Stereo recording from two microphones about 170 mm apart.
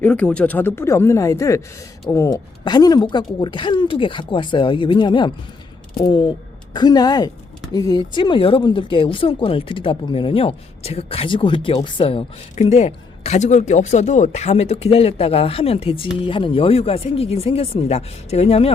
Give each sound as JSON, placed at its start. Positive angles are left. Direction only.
{"t": 0.0, "sound": "speech", "side_deg": 5}